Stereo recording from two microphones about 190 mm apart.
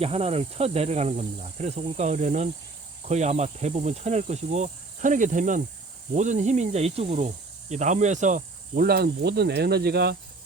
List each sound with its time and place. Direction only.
0.0 s speech: 30° right (ahead or behind); by 10.2 s 60° right (ahead or behind)